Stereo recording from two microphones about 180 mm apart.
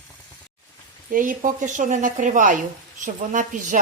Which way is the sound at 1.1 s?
50° right (ahead or behind).